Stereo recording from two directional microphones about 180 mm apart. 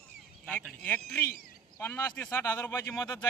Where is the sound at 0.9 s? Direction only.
10° left (ahead or behind).